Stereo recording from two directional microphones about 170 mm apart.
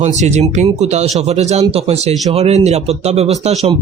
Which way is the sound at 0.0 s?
40° right (ahead or behind).